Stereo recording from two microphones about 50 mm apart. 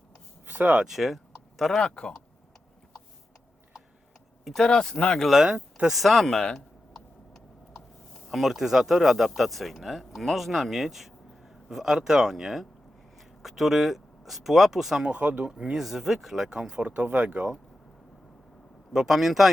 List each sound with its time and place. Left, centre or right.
0.4 s a sound: right
0.9 s speech: centre
1.8 s speech: centre
4.6 s speech: centre
5.2 s speech: centre
15.0 s speech: right
15.4 s speech: centre
15.8 s speech: centre; by 17.5 s right
18.9 s speech: centre